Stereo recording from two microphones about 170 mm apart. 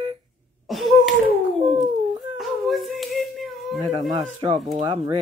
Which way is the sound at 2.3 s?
Centre (ahead or behind).